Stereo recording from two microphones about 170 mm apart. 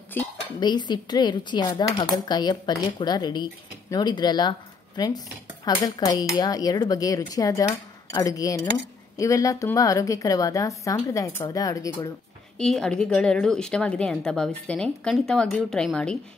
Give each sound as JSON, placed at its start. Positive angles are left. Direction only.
{"t": 0.2, "sound": "speech", "side_deg": 10}
{"t": 0.6, "sound": "a woman's voice", "side_deg": 25}
{"t": 12.5, "sound": "a woman's voice", "side_deg": 5}